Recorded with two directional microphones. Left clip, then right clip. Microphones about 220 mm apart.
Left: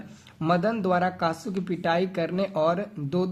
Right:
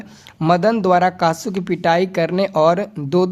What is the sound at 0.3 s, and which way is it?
Speech, 40° right (ahead or behind).